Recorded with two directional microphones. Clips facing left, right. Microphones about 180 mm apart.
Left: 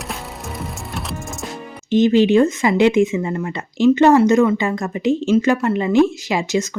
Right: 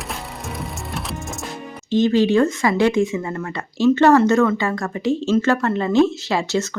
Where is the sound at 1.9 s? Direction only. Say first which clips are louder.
Left 3 dB; 20° left (ahead or behind).